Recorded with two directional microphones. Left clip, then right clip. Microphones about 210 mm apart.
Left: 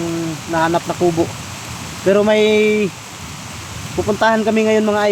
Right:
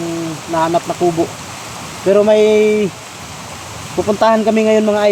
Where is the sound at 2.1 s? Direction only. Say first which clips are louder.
Right 3 dB; 20° left (ahead or behind).